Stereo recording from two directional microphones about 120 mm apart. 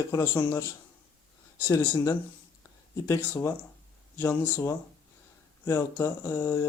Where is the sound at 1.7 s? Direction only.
25° left (ahead or behind).